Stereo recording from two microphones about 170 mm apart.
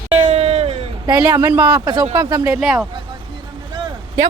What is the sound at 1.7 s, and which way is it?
Speech, 25° right (ahead or behind).